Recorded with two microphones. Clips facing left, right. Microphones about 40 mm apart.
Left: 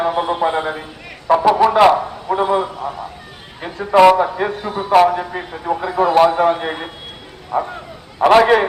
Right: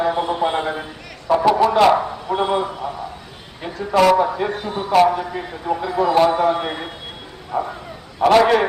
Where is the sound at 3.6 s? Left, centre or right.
Left.